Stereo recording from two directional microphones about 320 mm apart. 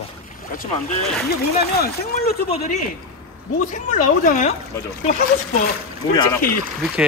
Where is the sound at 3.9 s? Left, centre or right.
Left.